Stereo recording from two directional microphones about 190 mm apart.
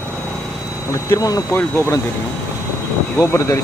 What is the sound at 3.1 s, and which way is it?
Speech, 15° left (ahead or behind).